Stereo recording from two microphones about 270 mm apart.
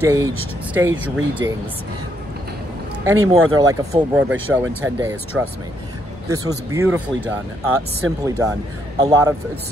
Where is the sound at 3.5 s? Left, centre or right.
Centre.